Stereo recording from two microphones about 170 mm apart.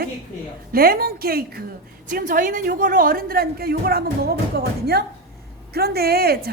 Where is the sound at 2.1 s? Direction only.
50° right (ahead or behind).